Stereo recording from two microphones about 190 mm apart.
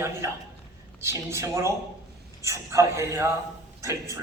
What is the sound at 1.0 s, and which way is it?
A man's voice, 15° right (ahead or behind).